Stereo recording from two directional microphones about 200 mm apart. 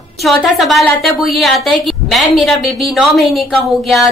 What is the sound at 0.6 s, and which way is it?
A woman's voice, centre (ahead or behind).